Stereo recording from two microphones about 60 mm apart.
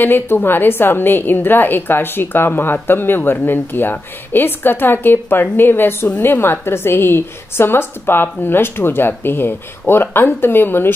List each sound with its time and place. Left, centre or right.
0.0 s a woman's voice: left